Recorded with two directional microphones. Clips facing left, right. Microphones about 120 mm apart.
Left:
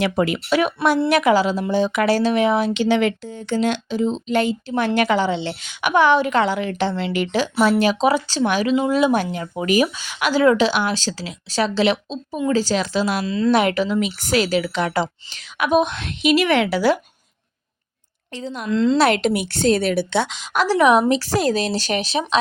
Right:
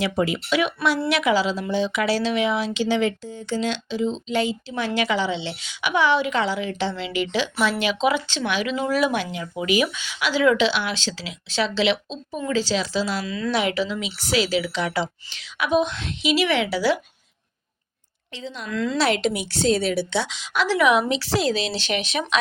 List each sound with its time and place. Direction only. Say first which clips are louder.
0.0 s a woman's voice: left 3 dB; 60° left (ahead or behind); by 8.7 s 40° left (ahead or behind)
8.7 s speech: left 4 dB; 25° left (ahead or behind)
9.1 s a woman's voice: left 4 dB; 45° left (ahead or behind)
13.2 s speech: left 7 dB; 30° left (ahead or behind)
13.5 s a woman's voice: left 5 dB; 50° left (ahead or behind)
18.3 s a woman's voice: left 5 dB; 45° left (ahead or behind)
18.7 s speech: left 8 dB; 30° left (ahead or behind)
18.9 s a woman's voice: left 5 dB; 55° left (ahead or behind); by 22.2 s 40° left (ahead or behind)